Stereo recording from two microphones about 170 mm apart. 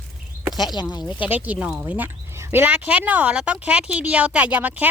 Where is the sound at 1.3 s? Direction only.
10° right (ahead or behind).